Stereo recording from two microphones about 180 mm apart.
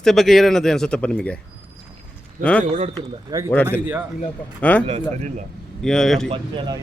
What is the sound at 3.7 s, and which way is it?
Speech, 10° right (ahead or behind).